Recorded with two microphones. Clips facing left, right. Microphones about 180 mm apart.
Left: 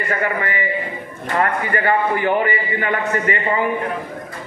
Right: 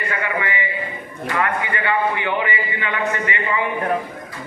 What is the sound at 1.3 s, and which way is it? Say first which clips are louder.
A man's voice: left 3 dB; 40° left (ahead or behind).